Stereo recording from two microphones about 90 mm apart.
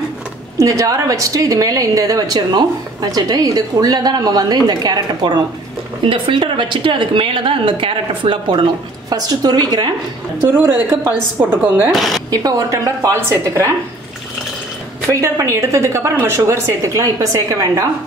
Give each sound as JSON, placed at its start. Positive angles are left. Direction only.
{"t": 0.6, "sound": "a woman's voice", "side_deg": -40}
{"t": 6.0, "sound": "a woman's voice", "side_deg": -75}
{"t": 9.1, "sound": "a woman's voice", "side_deg": -45}
{"t": 11.5, "sound": "speech", "side_deg": -25}
{"t": 11.9, "sound": "speech", "side_deg": 0}
{"t": 12.3, "sound": "a woman's voice", "side_deg": -45}
{"t": 15.0, "sound": "a woman's voice", "side_deg": -35}